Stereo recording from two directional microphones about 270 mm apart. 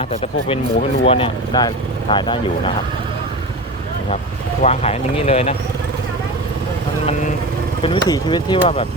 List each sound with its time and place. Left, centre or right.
0.0 s speech: left
4.6 s speech: left
7.8 s speech: centre